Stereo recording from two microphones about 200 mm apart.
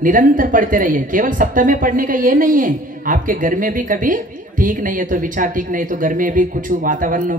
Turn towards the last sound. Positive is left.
turn(degrees=-40)  # may be behind; listen again after turning